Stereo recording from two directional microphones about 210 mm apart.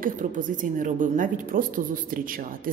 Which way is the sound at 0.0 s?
40° right (ahead or behind).